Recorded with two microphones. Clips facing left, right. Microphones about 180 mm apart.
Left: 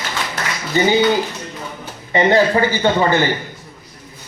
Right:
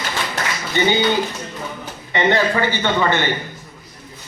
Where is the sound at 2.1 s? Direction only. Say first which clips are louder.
Left 4 dB; 35° left (ahead or behind).